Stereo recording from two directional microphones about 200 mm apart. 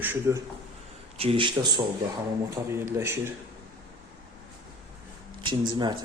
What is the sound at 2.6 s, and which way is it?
Speech, 15° right (ahead or behind).